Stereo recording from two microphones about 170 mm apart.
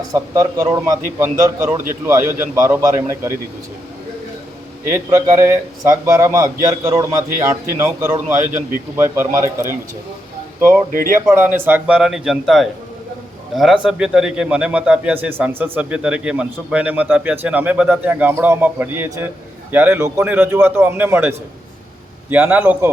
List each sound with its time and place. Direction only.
0.1 s a man's voice: 20° right (ahead or behind)
4.9 s a man's voice: 15° right (ahead or behind)
10.9 s speech: 55° right (ahead or behind)
11.3 s speech: 10° right (ahead or behind)
13.8 s a man's voice: 5° right (ahead or behind)